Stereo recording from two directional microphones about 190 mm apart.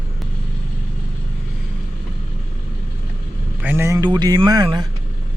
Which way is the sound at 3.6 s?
10° right (ahead or behind).